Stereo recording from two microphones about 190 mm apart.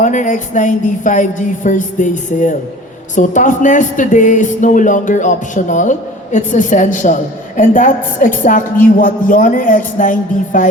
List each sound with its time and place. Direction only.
0.0 s a woman's voice: 40° left (ahead or behind)